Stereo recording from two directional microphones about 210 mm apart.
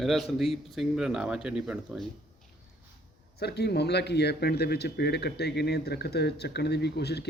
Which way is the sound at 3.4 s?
50° left (ahead or behind).